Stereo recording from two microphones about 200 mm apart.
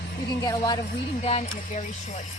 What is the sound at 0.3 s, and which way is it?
Speech, 20° left (ahead or behind).